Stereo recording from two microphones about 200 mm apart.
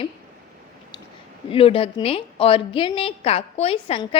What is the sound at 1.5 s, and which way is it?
A woman's voice, 25° left (ahead or behind).